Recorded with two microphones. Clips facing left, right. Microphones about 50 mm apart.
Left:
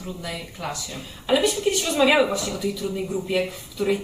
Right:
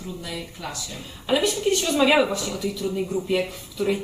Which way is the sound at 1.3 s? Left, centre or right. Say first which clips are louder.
Left 1 dB; centre.